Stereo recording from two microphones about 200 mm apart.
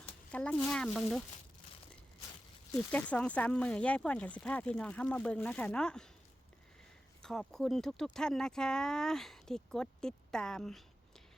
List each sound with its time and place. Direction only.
0.3 s speech: 5° left (ahead or behind)
2.7 s speech: 5° left (ahead or behind)
7.2 s speech: centre (ahead or behind)